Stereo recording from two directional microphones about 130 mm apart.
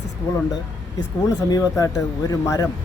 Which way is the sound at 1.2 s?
25° left (ahead or behind).